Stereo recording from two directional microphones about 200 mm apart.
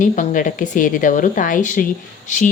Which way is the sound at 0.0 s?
40° left (ahead or behind).